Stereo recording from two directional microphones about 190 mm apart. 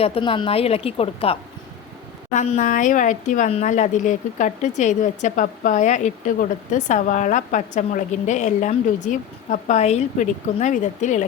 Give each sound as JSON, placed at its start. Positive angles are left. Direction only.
{"t": 0.0, "sound": "speech", "side_deg": 30}